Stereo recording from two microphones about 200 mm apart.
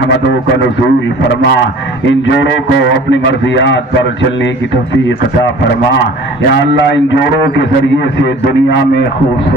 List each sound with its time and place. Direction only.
2.0 s a man's voice: 65° left (ahead or behind)
8.2 s a man's voice: 60° left (ahead or behind)